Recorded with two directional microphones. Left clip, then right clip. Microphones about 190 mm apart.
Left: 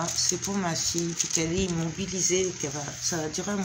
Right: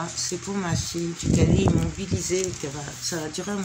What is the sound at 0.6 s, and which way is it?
Speech, 10° left (ahead or behind).